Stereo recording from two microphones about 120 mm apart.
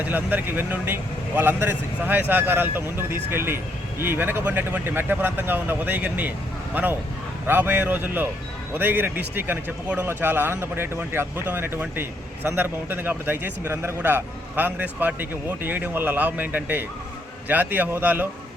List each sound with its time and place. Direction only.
0.0 s a man's voice: 15° right (ahead or behind)
7.4 s a man's voice: 15° right (ahead or behind)